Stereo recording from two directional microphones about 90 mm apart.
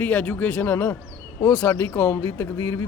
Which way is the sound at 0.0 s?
20° left (ahead or behind).